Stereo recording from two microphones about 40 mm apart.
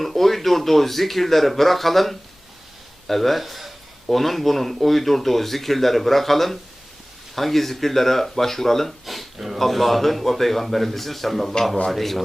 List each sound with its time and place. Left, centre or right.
0.0 s speech: centre